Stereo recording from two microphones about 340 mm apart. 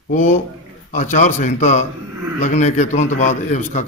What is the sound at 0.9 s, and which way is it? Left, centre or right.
A man's voice, left.